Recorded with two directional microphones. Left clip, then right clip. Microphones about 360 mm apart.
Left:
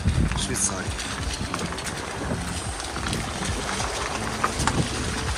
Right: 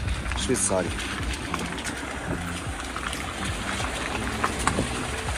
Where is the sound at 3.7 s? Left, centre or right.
Left.